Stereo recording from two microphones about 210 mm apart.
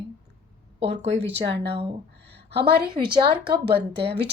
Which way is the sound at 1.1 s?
60° right (ahead or behind).